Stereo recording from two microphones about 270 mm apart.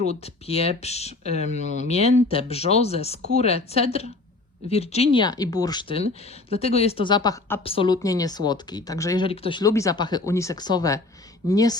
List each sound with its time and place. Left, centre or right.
0.1 s speech: left